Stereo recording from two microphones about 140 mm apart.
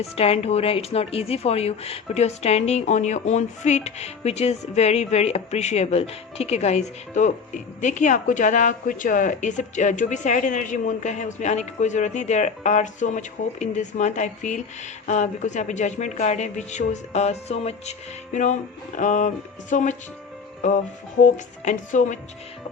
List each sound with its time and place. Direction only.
0.0 s speech: 45° left (ahead or behind)
18.9 s speech: 65° left (ahead or behind)